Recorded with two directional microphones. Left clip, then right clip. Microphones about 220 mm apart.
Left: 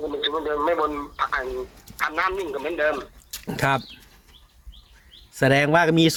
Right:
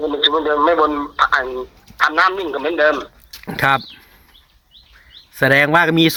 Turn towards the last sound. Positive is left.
turn(degrees=-15)  # may be behind; listen again after turning